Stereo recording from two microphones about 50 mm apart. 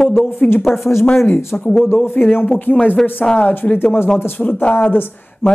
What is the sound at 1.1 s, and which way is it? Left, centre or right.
Speech, left.